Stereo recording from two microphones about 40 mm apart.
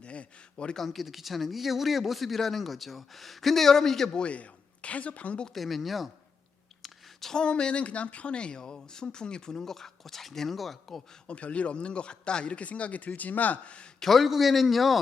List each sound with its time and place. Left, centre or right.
0.0 s a sound: left
0.8 s speech: centre
4.1 s speech: left
5.5 s speech: centre
6.8 s a sound: centre
7.3 s speech: left; by 11.0 s centre
11.3 s speech: left
14.0 s speech: centre